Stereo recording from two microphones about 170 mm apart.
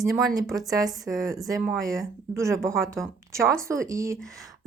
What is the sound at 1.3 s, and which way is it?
Speech, 20° right (ahead or behind).